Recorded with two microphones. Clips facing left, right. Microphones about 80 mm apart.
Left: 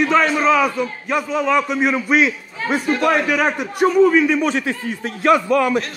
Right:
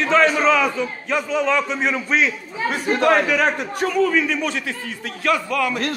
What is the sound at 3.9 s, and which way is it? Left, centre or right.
A man's voice, left.